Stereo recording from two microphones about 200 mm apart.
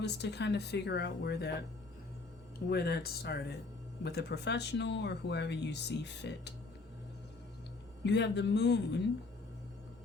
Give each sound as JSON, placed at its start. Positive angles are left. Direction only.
{"t": 0.0, "sound": "speech", "side_deg": 60}
{"t": 2.6, "sound": "speech", "side_deg": 55}
{"t": 8.0, "sound": "speech", "side_deg": 60}